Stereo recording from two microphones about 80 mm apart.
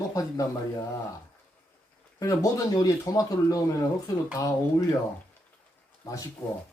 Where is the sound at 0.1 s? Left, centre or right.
Left.